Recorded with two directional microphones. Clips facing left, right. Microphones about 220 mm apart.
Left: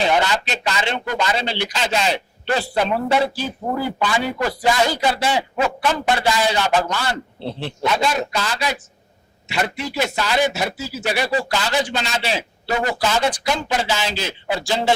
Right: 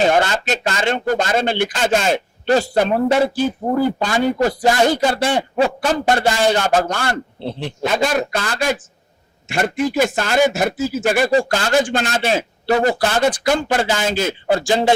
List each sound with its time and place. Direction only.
0.0 s speech: 45° right (ahead or behind)
7.4 s speech: 15° right (ahead or behind)
7.9 s speech: 50° right (ahead or behind)